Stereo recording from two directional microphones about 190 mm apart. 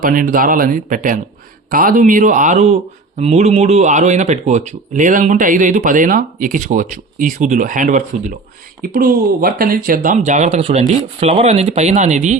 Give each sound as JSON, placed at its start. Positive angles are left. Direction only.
{"t": 0.0, "sound": "speech", "side_deg": -45}